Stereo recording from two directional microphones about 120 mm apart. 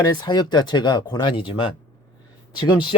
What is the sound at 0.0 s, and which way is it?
Speech, 35° left (ahead or behind).